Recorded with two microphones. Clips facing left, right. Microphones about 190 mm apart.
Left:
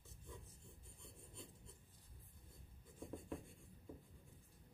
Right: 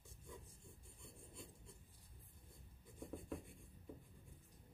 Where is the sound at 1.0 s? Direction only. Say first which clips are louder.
Right 1 dB; 10° right (ahead or behind).